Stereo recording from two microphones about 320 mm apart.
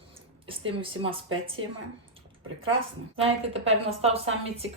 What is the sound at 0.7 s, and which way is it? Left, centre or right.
Speech, centre.